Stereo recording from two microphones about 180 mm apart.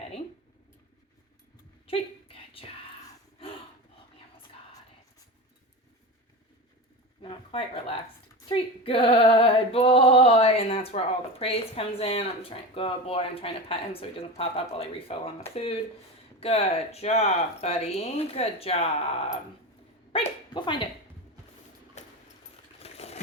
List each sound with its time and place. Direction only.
1.9 s whispering: 30° left (ahead or behind)
7.2 s speech: 30° left (ahead or behind)
8.4 s female singing: 30° left (ahead or behind)
20.1 s speech: 25° left (ahead or behind)
22.0 s a sound: 40° left (ahead or behind)